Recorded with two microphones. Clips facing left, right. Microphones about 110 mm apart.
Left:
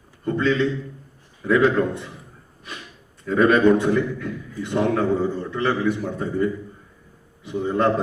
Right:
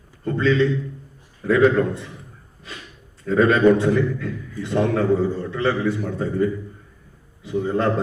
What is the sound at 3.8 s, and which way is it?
A man's voice, 25° left (ahead or behind).